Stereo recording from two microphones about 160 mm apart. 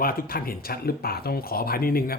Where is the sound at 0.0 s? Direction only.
65° left (ahead or behind).